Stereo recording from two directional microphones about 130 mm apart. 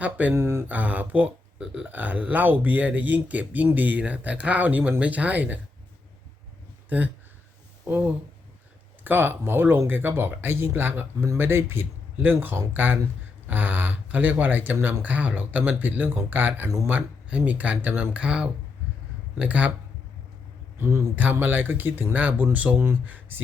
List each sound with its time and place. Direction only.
0.0 s speech: 10° right (ahead or behind)
7.9 s speech: 15° right (ahead or behind)
20.7 s speech: 20° right (ahead or behind)